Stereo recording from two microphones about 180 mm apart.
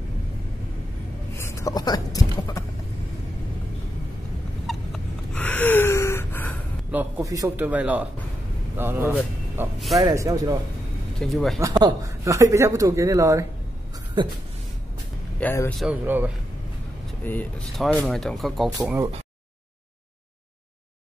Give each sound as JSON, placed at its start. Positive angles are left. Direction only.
{"t": 1.3, "sound": "speech", "side_deg": 15}
{"t": 4.6, "sound": "gasp", "side_deg": 5}
{"t": 6.9, "sound": "speech", "side_deg": -10}
{"t": 11.1, "sound": "speech", "side_deg": 0}
{"t": 11.6, "sound": "speech", "side_deg": -20}
{"t": 15.4, "sound": "speech", "side_deg": 15}
{"t": 15.8, "sound": "speech", "side_deg": -10}
{"t": 17.2, "sound": "speech", "side_deg": 10}